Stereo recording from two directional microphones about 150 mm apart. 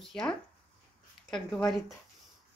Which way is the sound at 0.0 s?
5° left (ahead or behind).